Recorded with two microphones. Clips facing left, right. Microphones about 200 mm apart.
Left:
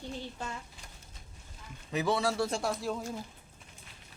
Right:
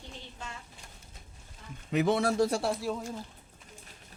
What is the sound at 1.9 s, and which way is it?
Speech, 55° right (ahead or behind).